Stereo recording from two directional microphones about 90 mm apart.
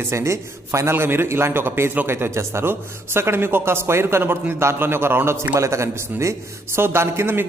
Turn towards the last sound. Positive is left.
turn(degrees=-30)  # may be behind; listen again after turning